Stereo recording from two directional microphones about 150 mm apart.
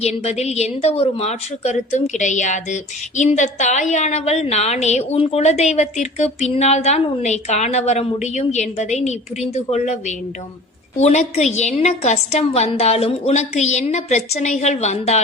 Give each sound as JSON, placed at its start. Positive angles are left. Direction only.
{"t": 0.0, "sound": "a woman's voice", "side_deg": 45}